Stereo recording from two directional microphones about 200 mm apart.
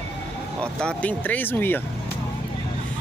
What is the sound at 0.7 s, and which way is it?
Speech, 5° left (ahead or behind).